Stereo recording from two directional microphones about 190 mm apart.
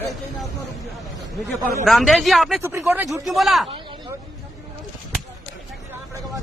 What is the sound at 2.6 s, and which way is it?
Speech, 15° right (ahead or behind).